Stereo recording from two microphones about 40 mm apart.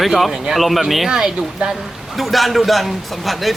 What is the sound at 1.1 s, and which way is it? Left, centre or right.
Speech, centre.